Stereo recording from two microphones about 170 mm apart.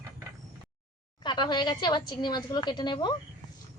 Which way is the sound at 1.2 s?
25° left (ahead or behind).